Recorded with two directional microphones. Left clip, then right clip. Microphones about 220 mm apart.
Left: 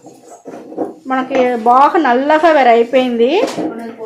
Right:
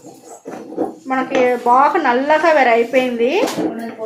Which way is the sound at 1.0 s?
50° left (ahead or behind).